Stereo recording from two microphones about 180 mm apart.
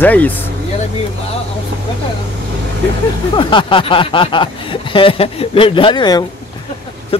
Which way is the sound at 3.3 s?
30° left (ahead or behind).